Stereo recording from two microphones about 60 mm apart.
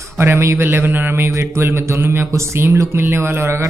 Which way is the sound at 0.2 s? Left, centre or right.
Right.